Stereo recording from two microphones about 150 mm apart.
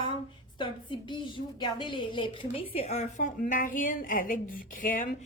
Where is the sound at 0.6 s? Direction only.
35° left (ahead or behind); by 5.0 s 65° left (ahead or behind).